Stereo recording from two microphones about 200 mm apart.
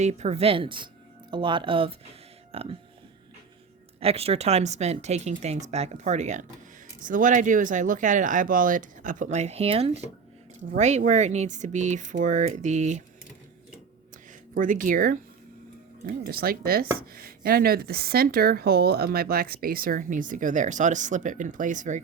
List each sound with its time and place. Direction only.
0.0 s speech: 35° right (ahead or behind)
4.0 s speech: 30° right (ahead or behind)
14.5 s speech: 40° right (ahead or behind)